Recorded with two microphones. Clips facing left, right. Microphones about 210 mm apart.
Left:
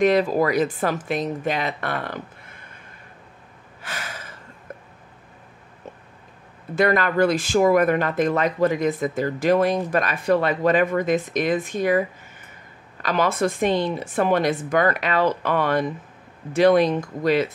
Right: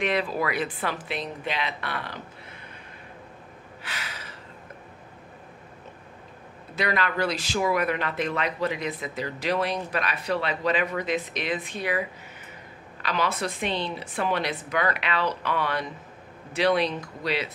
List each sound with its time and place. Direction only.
0.0 s speech: 40° left (ahead or behind)
3.8 s a sound: 45° left (ahead or behind)
6.7 s speech: 50° left (ahead or behind)
13.0 s speech: 50° left (ahead or behind)